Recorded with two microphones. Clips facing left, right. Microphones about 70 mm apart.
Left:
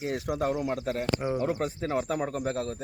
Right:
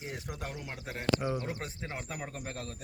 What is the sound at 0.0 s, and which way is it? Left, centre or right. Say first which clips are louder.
Speech: left 12 dB; left.